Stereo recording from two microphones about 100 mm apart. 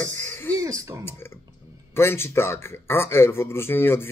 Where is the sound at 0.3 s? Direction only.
20° left (ahead or behind).